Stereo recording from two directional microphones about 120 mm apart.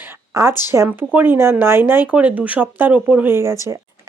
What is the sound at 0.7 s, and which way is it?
Speech, 20° right (ahead or behind).